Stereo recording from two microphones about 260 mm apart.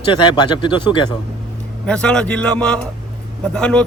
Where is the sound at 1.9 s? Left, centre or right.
Centre.